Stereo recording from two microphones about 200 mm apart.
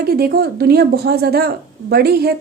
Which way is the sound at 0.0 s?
50° right (ahead or behind).